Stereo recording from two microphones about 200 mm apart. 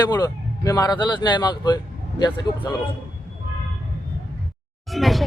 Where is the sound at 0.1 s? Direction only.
20° left (ahead or behind).